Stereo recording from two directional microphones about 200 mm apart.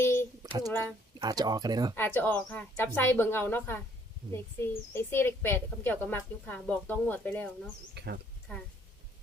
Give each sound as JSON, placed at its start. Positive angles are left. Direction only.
{"t": 0.0, "sound": "a sound", "side_deg": 10}
{"t": 1.2, "sound": "speech", "side_deg": -20}
{"t": 2.0, "sound": "a woman's voice", "side_deg": 10}
{"t": 7.9, "sound": "speech", "side_deg": -55}